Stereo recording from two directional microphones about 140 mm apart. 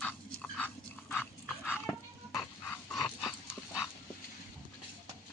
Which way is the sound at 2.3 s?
20° left (ahead or behind).